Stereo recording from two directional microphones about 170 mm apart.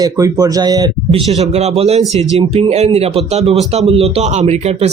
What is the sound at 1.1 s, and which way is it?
Speech, 40° right (ahead or behind).